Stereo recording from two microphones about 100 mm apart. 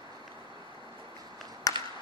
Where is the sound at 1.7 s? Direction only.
40° left (ahead or behind).